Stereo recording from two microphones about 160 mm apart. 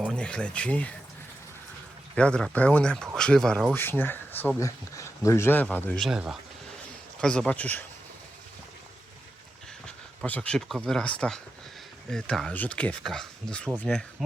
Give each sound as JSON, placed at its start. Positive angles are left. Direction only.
{"t": 0.1, "sound": "speech", "side_deg": 5}
{"t": 2.1, "sound": "speech", "side_deg": 5}
{"t": 6.0, "sound": "speech", "side_deg": -5}
{"t": 10.2, "sound": "speech", "side_deg": 10}